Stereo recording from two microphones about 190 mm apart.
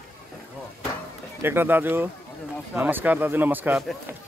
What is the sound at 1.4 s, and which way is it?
A man's voice, 10° right (ahead or behind).